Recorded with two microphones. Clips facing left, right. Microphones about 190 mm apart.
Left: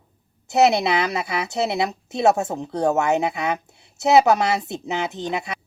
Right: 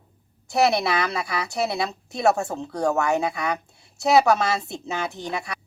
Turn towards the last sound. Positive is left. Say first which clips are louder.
# left 3 dB
turn(degrees=20)  # may be behind; listen again after turning